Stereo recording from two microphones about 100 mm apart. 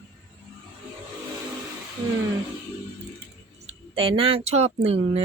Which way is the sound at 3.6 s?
80° right.